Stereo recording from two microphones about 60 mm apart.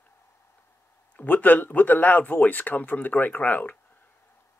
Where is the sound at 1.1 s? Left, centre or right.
Left.